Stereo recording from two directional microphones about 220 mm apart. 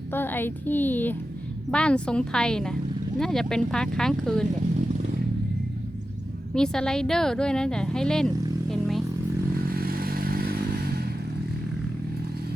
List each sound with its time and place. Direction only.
0.1 s a woman's voice: 10° left (ahead or behind)
6.5 s speech: 5° left (ahead or behind)
8.7 s vehicle: centre (ahead or behind)
9.6 s motorcycle: 40° right (ahead or behind)